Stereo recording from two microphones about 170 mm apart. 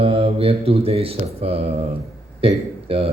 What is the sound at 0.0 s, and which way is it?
Speech, 35° right (ahead or behind).